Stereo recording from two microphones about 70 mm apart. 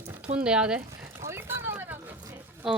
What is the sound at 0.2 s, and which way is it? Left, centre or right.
Speech, centre.